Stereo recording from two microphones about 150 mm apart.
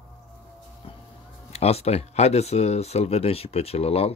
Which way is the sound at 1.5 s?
45° left (ahead or behind).